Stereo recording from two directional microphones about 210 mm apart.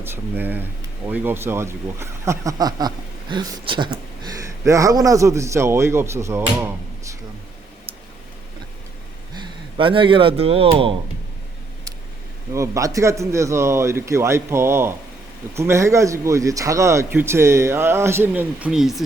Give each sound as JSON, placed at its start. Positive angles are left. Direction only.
{"t": 0.0, "sound": "speech", "side_deg": -10}
{"t": 9.3, "sound": "speech", "side_deg": -20}
{"t": 12.5, "sound": "speech", "side_deg": -15}